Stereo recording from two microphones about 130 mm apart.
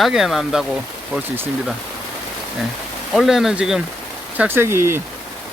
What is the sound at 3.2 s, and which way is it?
Speech, centre (ahead or behind).